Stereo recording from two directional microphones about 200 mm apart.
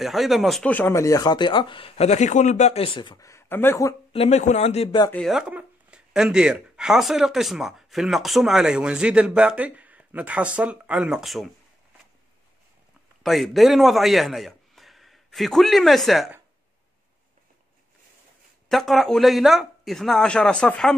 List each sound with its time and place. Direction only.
0.0 s speech: centre (ahead or behind)
4.1 s speech: 30° left (ahead or behind)
5.1 s speech: centre (ahead or behind)
13.2 s a man's voice: centre (ahead or behind)
18.7 s speech: centre (ahead or behind)